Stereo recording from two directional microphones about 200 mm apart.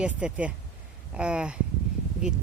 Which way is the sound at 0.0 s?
5° right (ahead or behind).